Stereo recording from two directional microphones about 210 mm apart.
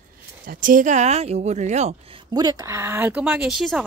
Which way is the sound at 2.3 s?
15° right (ahead or behind).